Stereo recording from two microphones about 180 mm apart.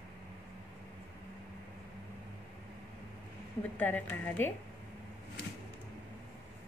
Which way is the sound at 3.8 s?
10° left (ahead or behind).